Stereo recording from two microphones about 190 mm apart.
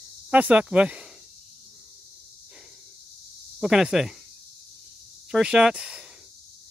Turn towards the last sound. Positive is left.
turn(degrees=-5)  # may be behind; listen again after turning